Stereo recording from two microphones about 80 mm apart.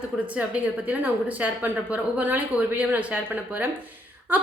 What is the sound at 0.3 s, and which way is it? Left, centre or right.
A woman's voice, centre.